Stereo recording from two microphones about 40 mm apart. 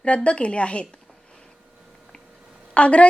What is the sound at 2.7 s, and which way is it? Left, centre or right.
Speech, left.